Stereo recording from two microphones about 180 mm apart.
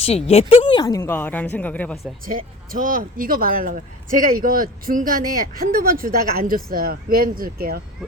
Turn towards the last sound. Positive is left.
turn(degrees=-55)  # may be behind; listen again after turning